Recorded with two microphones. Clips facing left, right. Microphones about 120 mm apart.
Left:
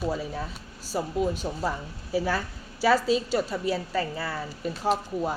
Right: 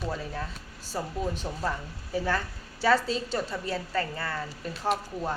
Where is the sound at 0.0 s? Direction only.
10° left (ahead or behind).